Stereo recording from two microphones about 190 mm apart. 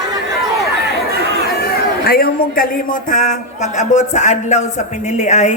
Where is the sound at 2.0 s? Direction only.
50° left (ahead or behind).